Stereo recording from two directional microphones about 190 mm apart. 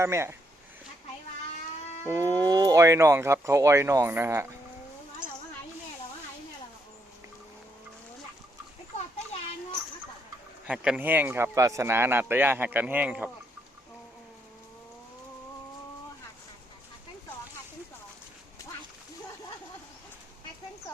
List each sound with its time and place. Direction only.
0.0 s a man's voice: 15° right (ahead or behind)
2.0 s a man's voice: 15° right (ahead or behind)
10.7 s a man's voice: 5° right (ahead or behind)